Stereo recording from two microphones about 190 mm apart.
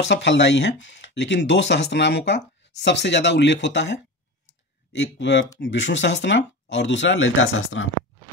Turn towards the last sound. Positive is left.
turn(degrees=90)